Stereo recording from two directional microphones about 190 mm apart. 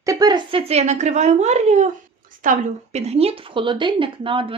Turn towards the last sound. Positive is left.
turn(degrees=-25)  # may be behind; listen again after turning